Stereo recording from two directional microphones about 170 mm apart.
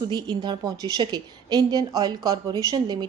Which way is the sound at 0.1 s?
25° right (ahead or behind).